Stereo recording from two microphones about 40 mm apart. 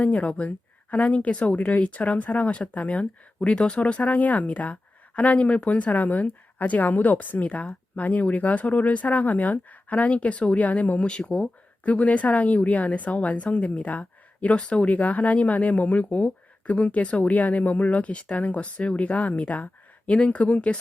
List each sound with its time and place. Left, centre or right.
0.0 s speech: left